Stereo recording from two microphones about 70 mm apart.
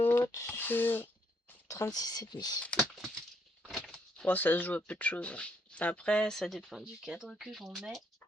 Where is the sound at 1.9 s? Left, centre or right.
Left.